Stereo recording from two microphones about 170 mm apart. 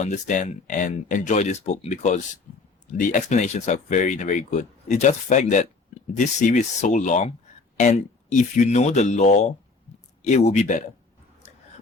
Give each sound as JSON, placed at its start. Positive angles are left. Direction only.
{"t": 0.0, "sound": "speech", "side_deg": 45}